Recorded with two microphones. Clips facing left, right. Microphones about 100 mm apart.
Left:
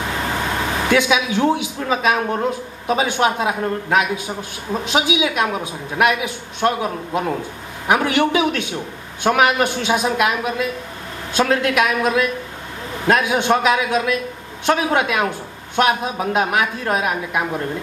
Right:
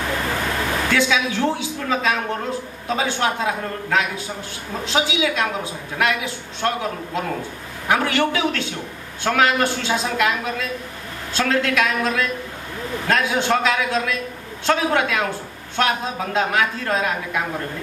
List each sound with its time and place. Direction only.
0.8 s a woman's voice: 20° left (ahead or behind)